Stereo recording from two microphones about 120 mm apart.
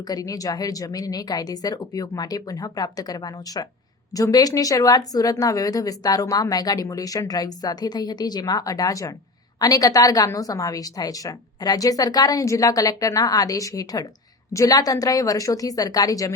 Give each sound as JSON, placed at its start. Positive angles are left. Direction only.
{"t": 0.1, "sound": "a woman's voice", "side_deg": 30}